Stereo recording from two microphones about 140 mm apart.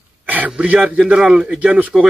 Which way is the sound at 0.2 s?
10° right (ahead or behind).